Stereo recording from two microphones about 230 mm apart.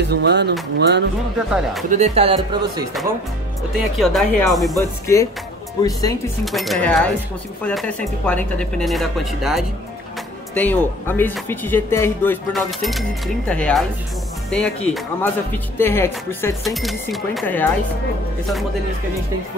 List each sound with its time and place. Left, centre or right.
0.0 s speech: right
1.5 s speech: centre
1.9 s speech: right
3.7 s speech: centre
4.7 s speech: centre
6.4 s speech: centre